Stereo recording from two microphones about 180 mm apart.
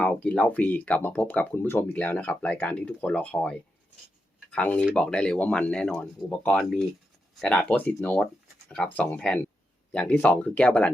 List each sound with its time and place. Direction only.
0.0 s speech: 5° left (ahead or behind)